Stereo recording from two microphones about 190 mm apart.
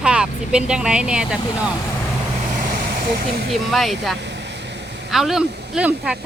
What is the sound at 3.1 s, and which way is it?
Speech, 55° right (ahead or behind).